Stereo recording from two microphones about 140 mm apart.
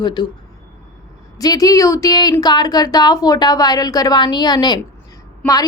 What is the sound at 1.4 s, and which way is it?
A woman's voice, 25° left (ahead or behind).